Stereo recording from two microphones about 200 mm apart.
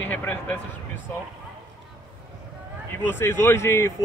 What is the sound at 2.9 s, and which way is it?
Speech, 10° left (ahead or behind).